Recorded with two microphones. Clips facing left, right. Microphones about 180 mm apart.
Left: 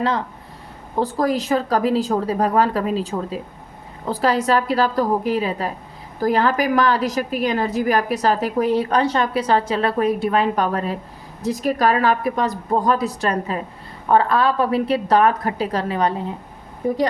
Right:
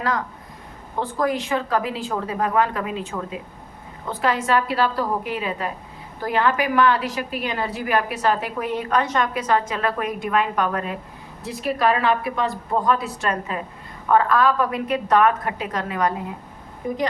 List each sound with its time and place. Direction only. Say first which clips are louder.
0.9 s a woman's voice: left 3 dB; 35° left (ahead or behind)